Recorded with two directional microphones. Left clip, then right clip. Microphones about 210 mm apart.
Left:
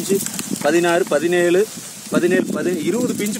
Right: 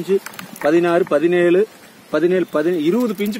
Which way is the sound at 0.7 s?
40° right (ahead or behind).